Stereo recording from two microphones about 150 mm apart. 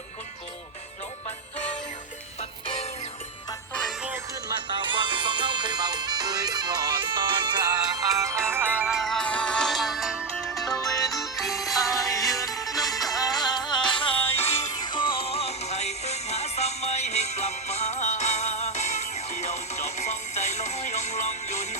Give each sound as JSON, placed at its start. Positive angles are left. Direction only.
{"t": 4.4, "sound": "music", "side_deg": -30}
{"t": 12.4, "sound": "music", "side_deg": 20}
{"t": 12.7, "sound": "music", "side_deg": 0}
{"t": 14.2, "sound": "music", "side_deg": 15}
{"t": 14.8, "sound": "music", "side_deg": 35}